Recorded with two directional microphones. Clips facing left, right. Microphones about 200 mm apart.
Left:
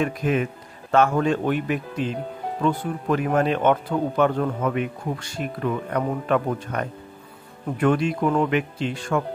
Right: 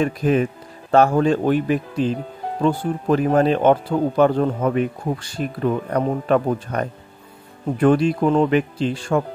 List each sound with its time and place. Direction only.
0.0 s speech: 35° right (ahead or behind)